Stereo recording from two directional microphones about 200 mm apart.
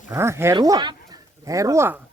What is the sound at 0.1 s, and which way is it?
Speech, 15° right (ahead or behind).